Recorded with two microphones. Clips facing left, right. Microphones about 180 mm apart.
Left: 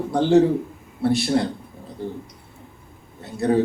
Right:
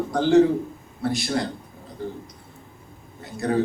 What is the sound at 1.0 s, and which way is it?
Speech, 30° left (ahead or behind).